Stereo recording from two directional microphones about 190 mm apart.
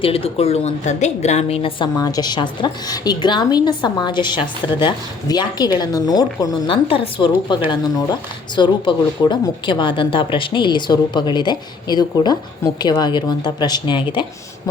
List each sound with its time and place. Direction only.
0.0 s a woman's voice: 30° left (ahead or behind)